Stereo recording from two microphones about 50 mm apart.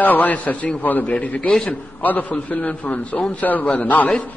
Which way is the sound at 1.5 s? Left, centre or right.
Centre.